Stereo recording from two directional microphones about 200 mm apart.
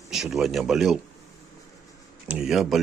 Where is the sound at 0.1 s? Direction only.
Centre (ahead or behind).